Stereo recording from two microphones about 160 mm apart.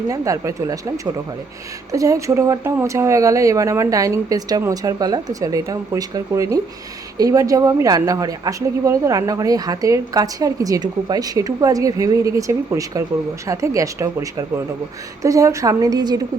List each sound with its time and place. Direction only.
0.1 s a woman's voice: 20° right (ahead or behind)